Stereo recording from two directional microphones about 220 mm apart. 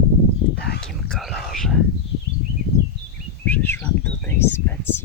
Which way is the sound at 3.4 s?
10° left (ahead or behind).